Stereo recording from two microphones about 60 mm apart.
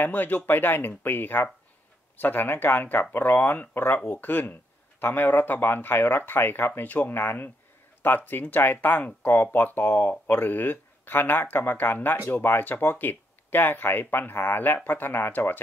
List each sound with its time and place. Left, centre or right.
0.0 s speech: left